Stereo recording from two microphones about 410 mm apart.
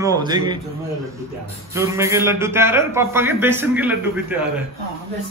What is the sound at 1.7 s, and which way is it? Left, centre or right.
A man's voice, centre.